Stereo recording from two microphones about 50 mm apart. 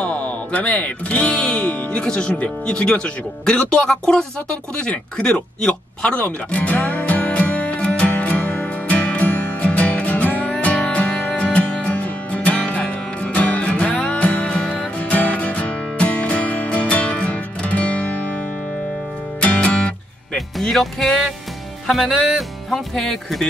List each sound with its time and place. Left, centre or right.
0.0 s speech: left
8.1 s music: left
19.4 s music: left
20.3 s music: centre
21.8 s speech: centre